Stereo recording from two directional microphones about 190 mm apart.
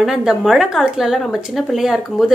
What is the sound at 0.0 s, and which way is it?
A woman's voice, 5° right (ahead or behind).